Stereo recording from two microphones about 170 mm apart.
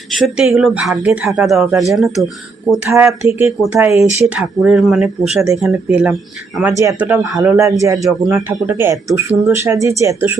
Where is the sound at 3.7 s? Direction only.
15° right (ahead or behind).